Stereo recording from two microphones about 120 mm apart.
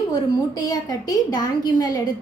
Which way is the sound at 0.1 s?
35° left (ahead or behind).